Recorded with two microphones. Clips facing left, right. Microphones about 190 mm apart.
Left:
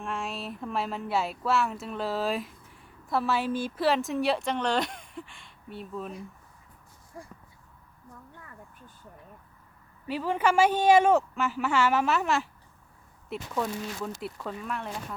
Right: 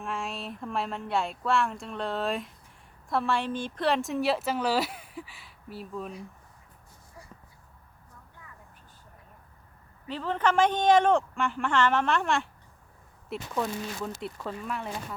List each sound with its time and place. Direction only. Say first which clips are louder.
0.0 s a woman's voice: even; centre (ahead or behind)
7.2 s a sound: left 7 dB; 50° left (ahead or behind)
10.1 s a woman's voice: left 1 dB; 10° left (ahead or behind)